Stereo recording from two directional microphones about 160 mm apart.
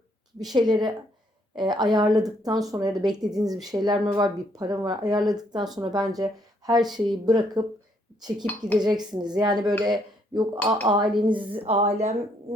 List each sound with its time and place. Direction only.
0.5 s speech: 25° right (ahead or behind)
8.8 s a woman's voice: 25° right (ahead or behind); by 12.1 s 40° right (ahead or behind)